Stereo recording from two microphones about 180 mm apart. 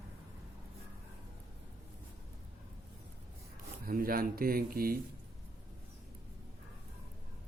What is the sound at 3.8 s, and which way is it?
Speech, 55° right (ahead or behind).